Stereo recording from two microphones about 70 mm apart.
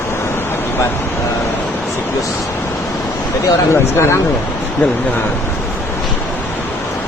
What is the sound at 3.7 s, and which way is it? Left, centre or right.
Speech, left.